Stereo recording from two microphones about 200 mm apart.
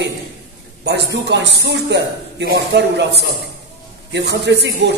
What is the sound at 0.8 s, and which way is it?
A man's voice, 60° right (ahead or behind).